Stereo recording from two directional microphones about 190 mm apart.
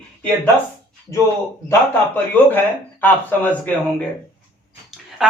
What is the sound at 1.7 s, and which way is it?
Speech, 10° left (ahead or behind).